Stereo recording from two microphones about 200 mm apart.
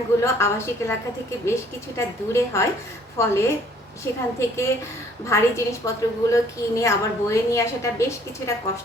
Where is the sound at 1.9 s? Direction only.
15° left (ahead or behind).